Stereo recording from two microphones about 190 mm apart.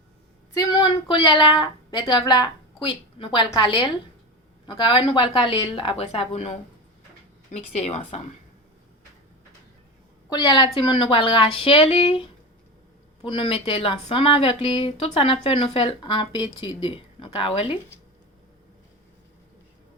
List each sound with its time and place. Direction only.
0.5 s a woman's voice: 20° left (ahead or behind)
10.2 s speech: 25° left (ahead or behind)
13.2 s speech: 25° left (ahead or behind)